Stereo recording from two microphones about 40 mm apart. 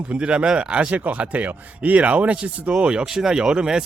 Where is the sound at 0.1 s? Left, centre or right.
Right.